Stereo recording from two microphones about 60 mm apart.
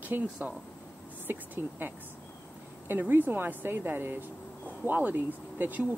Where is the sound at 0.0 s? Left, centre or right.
Right.